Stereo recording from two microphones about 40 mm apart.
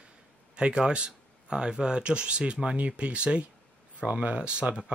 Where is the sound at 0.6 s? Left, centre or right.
Right.